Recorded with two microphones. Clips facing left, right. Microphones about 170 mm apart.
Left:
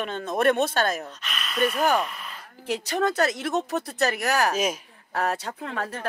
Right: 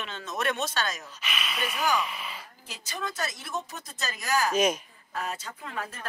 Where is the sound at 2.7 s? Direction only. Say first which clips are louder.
Left 12 dB; 65° left (ahead or behind).